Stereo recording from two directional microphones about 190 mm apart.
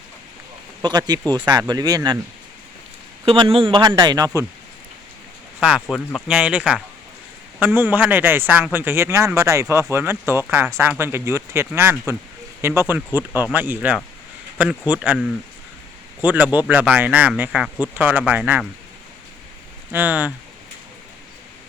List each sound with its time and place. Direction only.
0.8 s a man's voice: 20° right (ahead or behind)
3.2 s a man's voice: 30° right (ahead or behind)
5.5 s a man's voice: 5° right (ahead or behind)
19.9 s a man's voice: 10° right (ahead or behind)